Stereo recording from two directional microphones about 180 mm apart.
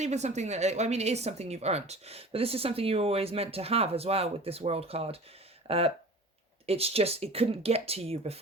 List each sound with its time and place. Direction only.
0.0 s a woman's voice: 40° right (ahead or behind)
5.6 s a sound: 35° right (ahead or behind)
6.7 s a woman's voice: 35° right (ahead or behind)